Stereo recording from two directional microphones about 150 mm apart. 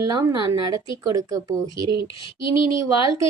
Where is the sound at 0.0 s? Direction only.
25° right (ahead or behind).